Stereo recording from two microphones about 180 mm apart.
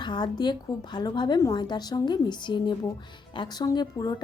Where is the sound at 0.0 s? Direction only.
25° left (ahead or behind).